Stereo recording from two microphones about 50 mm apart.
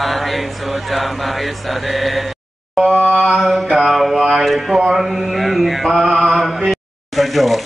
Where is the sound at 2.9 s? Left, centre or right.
Right.